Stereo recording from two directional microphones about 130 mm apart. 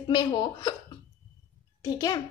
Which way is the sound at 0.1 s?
35° left (ahead or behind).